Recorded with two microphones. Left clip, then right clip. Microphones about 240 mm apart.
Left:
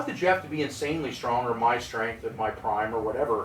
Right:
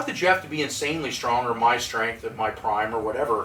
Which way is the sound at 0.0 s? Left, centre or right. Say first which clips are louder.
Right 3 dB; centre.